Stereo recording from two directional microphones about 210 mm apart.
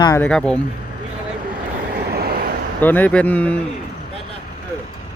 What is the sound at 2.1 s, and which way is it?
Vehicle, 45° right (ahead or behind).